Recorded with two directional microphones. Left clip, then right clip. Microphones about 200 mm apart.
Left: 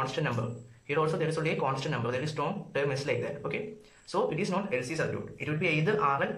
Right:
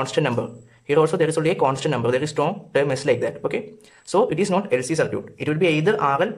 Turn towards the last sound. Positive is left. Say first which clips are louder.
# right 8 dB
turn(degrees=-45)  # may be behind; listen again after turning